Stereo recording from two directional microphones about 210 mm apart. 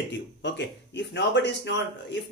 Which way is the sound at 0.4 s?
55° left (ahead or behind).